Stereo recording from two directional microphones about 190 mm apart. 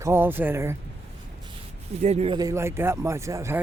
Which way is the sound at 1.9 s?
35° right (ahead or behind).